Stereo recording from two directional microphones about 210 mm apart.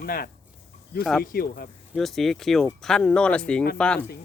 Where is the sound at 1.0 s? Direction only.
Centre (ahead or behind).